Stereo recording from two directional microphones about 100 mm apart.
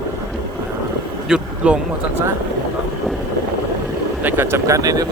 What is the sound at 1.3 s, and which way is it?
Speech, 10° right (ahead or behind).